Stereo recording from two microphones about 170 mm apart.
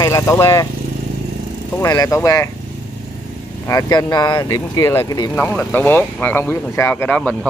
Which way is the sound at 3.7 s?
20° left (ahead or behind).